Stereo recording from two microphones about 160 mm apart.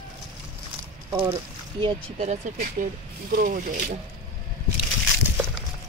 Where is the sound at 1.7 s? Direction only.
40° right (ahead or behind).